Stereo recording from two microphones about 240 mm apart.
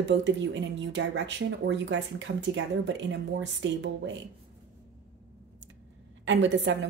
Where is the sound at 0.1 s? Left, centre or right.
Right.